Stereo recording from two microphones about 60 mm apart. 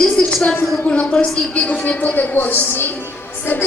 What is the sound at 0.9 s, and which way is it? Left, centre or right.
A woman's voice, centre.